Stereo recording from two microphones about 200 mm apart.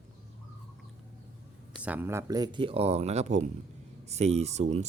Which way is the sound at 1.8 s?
10° right (ahead or behind).